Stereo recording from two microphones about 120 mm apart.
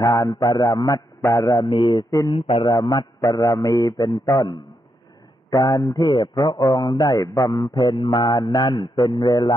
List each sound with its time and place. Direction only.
0.0 s a man's voice: 30° left (ahead or behind)
1.7 s mantra: 40° left (ahead or behind)
2.3 s a man's voice: 45° left (ahead or behind)
2.7 s a man's voice: 35° left (ahead or behind)
4.3 s mantra: 35° left (ahead or behind)
5.5 s a man's voice: 30° left (ahead or behind)
5.9 s mantra: 35° left (ahead or behind)